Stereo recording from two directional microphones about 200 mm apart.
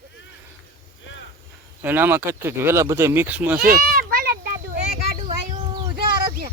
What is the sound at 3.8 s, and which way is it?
Children playing, 45° right (ahead or behind).